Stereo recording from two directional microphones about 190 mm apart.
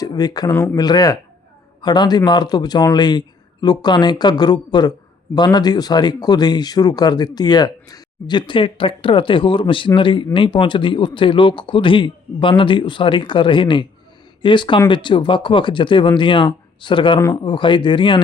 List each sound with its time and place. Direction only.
0.0 s speech: 20° left (ahead or behind)